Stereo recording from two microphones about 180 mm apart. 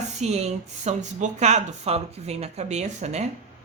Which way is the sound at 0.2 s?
35° right (ahead or behind).